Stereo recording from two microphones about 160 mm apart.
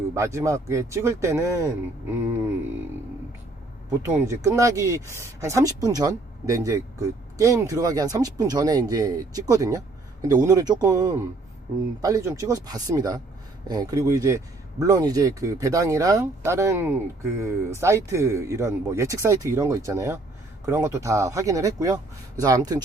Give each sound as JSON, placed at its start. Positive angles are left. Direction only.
{"t": 0.1, "sound": "speech", "side_deg": -20}
{"t": 4.1, "sound": "speech", "side_deg": -20}